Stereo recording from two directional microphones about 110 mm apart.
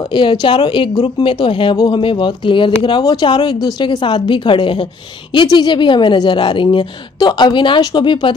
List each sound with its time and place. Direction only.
0.1 s speech: 50° left (ahead or behind)